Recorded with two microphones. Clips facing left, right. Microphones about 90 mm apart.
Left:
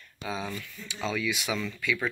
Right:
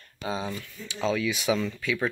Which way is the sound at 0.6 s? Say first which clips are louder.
Right 4 dB; 30° right (ahead or behind).